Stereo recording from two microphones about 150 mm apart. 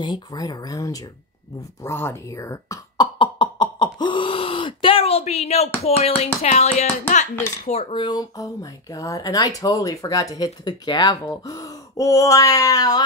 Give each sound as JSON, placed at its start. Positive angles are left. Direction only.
{"t": 0.0, "sound": "speech", "side_deg": 30}
{"t": 7.9, "sound": "speech", "side_deg": 30}